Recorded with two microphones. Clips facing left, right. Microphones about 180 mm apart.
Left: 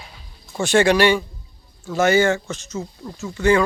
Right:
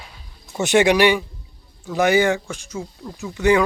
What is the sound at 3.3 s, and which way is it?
Speech, 15° right (ahead or behind).